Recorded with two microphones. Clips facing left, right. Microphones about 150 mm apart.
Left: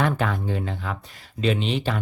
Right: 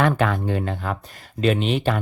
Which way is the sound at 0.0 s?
70° right (ahead or behind).